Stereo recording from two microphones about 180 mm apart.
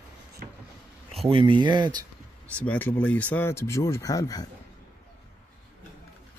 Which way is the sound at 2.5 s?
10° left (ahead or behind).